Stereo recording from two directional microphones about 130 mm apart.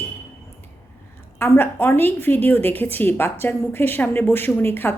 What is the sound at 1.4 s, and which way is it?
A woman's voice, 15° left (ahead or behind).